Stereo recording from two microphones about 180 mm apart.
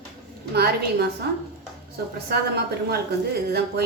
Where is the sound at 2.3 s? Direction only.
60° right (ahead or behind).